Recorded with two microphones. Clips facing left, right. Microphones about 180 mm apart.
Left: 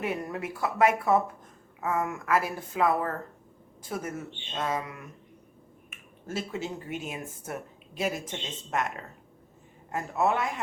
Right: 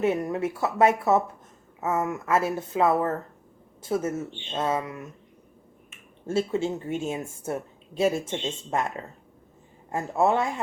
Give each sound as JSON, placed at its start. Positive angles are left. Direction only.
{"t": 0.0, "sound": "speech", "side_deg": -25}
{"t": 9.9, "sound": "speech", "side_deg": -25}